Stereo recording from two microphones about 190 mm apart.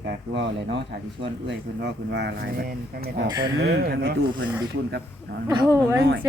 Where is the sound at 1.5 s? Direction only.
65° right (ahead or behind).